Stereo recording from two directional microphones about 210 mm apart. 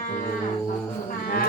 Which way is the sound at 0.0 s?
40° left (ahead or behind).